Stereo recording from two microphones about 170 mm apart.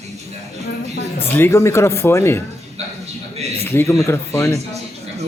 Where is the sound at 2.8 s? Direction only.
40° right (ahead or behind).